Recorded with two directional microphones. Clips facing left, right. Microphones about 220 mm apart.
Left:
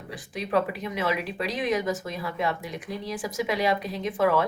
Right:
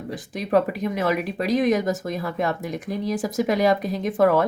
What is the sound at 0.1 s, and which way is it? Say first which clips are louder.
Speech: right 5 dB; 45° right (ahead or behind).